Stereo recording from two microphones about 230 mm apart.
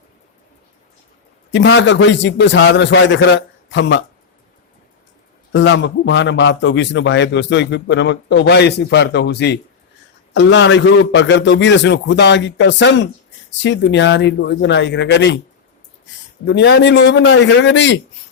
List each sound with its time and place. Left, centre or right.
1.5 s a man's voice: left
5.5 s a man's voice: left
16.5 s a man's voice: left